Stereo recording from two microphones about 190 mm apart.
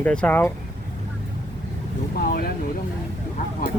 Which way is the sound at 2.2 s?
50° left (ahead or behind).